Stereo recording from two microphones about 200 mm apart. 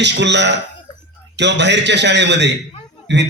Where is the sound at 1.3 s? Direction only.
60° right (ahead or behind).